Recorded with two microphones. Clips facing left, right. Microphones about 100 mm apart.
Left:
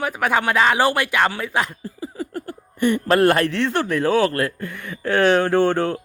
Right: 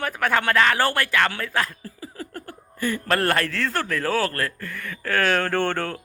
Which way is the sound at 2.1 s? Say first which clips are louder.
Left 7 dB; 5° left (ahead or behind).